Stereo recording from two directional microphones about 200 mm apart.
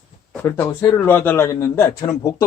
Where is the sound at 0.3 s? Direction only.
10° left (ahead or behind).